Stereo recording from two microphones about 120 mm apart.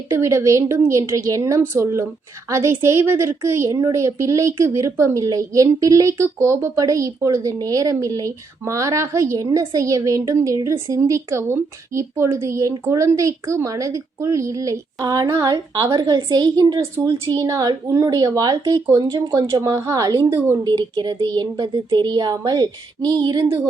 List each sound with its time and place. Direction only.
0.1 s a woman's voice: 25° right (ahead or behind)
20.7 s speech: 35° right (ahead or behind)